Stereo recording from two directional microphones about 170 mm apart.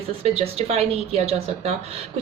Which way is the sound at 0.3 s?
35° right (ahead or behind).